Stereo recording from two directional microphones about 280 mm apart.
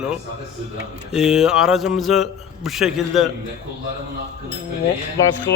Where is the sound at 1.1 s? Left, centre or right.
Centre.